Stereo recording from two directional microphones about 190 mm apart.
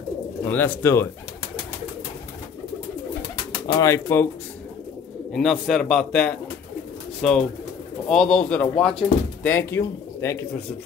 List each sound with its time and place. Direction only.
0.4 s speech: 10° left (ahead or behind)
3.6 s speech: 15° left (ahead or behind)
5.3 s a man's voice: centre (ahead or behind)